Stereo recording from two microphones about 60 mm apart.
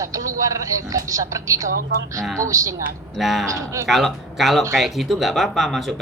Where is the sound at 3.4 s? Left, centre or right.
Right.